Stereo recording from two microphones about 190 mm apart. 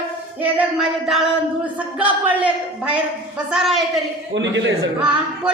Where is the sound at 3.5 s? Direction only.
Centre (ahead or behind).